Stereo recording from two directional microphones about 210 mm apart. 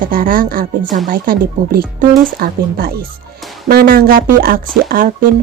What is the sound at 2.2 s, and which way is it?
Speech, 45° right (ahead or behind).